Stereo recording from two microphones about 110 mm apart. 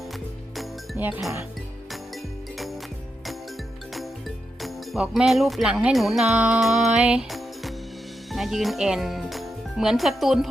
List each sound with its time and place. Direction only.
0.9 s speech: 15° right (ahead or behind)
4.6 s music: centre (ahead or behind)
8.3 s a child's voice: centre (ahead or behind)